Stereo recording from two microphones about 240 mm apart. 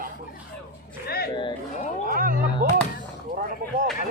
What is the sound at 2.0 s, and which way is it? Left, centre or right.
Roaring cats, right.